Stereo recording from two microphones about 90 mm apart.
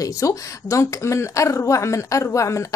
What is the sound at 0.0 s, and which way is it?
Speech, 35° left (ahead or behind).